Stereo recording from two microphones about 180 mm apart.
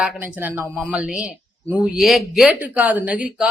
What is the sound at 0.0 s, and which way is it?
A woman's voice, 5° right (ahead or behind).